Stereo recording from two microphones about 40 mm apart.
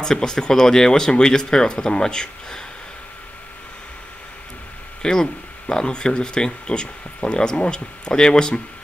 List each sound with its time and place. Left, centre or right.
0.0 s speech: centre
5.0 s speech: centre